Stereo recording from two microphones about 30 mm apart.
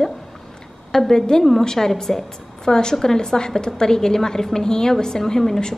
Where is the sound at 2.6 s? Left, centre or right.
Left.